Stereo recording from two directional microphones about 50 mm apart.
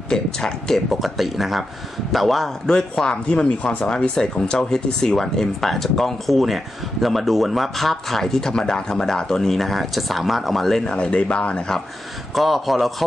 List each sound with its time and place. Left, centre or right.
0.1 s speech: centre
1.0 s a man's voice: centre
11.0 s speech: left
12.4 s a man's voice: centre